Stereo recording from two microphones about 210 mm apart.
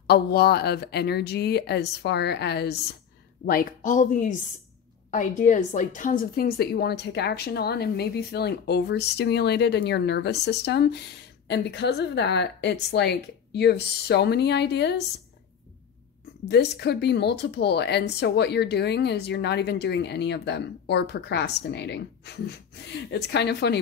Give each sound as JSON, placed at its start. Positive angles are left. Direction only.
{"t": 0.0, "sound": "a woman's voice", "side_deg": 50}
{"t": 3.4, "sound": "a woman's voice", "side_deg": 40}
{"t": 16.4, "sound": "a woman's voice", "side_deg": 50}